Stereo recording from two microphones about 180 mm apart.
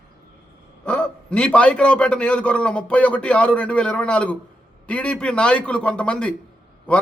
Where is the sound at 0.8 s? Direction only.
5° left (ahead or behind).